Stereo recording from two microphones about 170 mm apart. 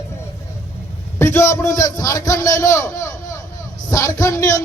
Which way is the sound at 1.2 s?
15° left (ahead or behind).